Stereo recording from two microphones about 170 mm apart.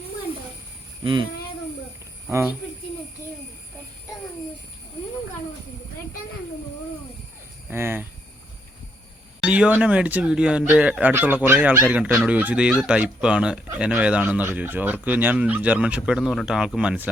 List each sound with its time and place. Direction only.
1.0 s speech: 30° right (ahead or behind)
7.7 s speech: 15° right (ahead or behind)
9.4 s speech: 10° right (ahead or behind)